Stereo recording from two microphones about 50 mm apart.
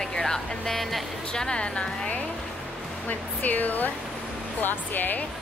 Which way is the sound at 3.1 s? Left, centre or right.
Left.